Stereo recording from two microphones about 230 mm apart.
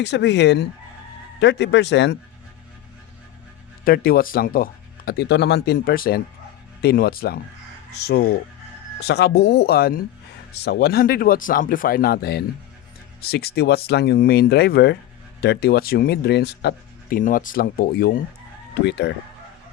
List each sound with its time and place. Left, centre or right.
0.0 s speech: left
3.8 s speech: left